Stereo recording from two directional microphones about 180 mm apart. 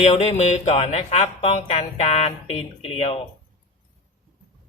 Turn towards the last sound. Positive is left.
turn(degrees=35)  # may be behind; listen again after turning